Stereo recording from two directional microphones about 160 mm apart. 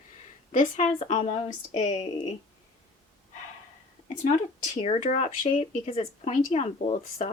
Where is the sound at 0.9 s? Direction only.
40° left (ahead or behind).